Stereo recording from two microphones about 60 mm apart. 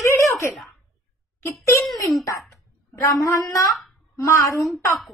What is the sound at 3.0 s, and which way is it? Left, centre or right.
Speech, left.